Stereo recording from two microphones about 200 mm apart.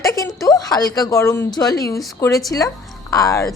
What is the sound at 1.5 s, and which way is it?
A woman's voice, 20° left (ahead or behind).